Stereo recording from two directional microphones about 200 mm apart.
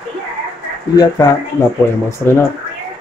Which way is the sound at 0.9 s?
20° left (ahead or behind).